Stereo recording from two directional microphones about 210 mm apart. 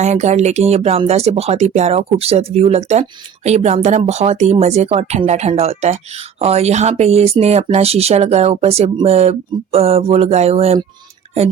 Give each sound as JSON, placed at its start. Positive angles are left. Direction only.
{"t": 0.0, "sound": "speech", "side_deg": -35}